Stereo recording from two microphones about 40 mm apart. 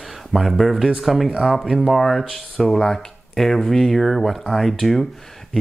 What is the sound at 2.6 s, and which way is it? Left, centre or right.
Speech, centre.